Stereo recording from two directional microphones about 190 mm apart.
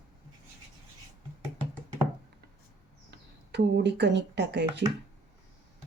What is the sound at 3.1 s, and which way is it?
Speech, 65° right (ahead or behind).